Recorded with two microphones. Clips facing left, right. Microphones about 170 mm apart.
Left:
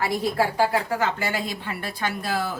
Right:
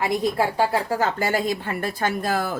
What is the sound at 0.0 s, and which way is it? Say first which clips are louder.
Speech: right 1 dB; 20° right (ahead or behind).